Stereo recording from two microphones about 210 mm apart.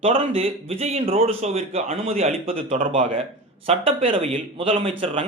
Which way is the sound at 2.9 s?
25° right (ahead or behind).